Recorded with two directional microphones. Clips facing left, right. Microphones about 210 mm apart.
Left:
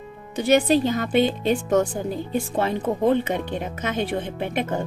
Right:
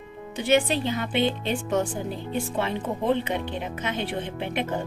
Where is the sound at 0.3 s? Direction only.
40° left (ahead or behind).